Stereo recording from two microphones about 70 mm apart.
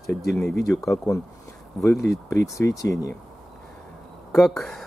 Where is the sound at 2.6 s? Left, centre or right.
Left.